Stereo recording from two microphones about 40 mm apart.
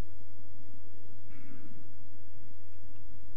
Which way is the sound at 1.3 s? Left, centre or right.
Centre.